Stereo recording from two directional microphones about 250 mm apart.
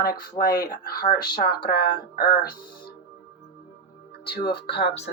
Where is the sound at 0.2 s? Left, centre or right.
Left.